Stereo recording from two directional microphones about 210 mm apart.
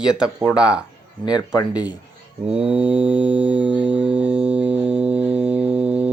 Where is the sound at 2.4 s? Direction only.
5° right (ahead or behind).